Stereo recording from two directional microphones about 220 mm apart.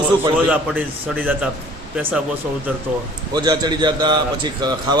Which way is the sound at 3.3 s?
20° right (ahead or behind).